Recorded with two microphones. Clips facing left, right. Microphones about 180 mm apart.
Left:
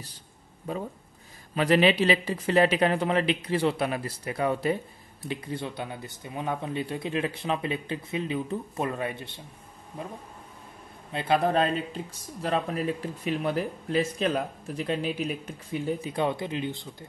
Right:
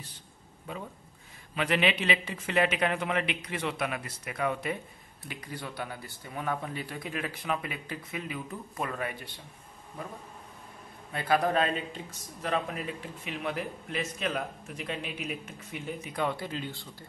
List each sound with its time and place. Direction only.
0.7 s speech: 40° left (ahead or behind)
11.1 s speech: 25° left (ahead or behind)